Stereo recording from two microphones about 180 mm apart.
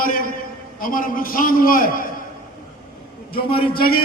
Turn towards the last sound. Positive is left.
turn(degrees=55)  # may be behind; listen again after turning